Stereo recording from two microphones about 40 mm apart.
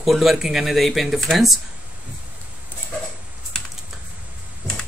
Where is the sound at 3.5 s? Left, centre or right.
Centre.